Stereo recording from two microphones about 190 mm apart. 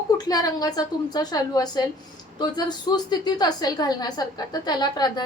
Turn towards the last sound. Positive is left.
turn(degrees=20)  # may be behind; listen again after turning